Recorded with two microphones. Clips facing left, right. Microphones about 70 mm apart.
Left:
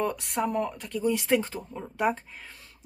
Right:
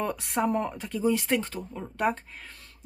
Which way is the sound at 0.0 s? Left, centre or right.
Centre.